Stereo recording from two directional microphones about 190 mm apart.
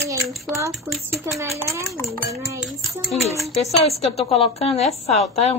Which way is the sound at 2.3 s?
Centre (ahead or behind).